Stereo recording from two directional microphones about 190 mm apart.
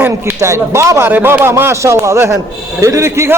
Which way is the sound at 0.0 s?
15° right (ahead or behind).